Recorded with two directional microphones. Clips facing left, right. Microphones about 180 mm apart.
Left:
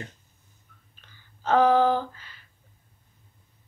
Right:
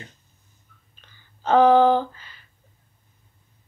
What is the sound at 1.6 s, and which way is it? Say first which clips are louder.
Speech: right 5 dB; 5° left (ahead or behind).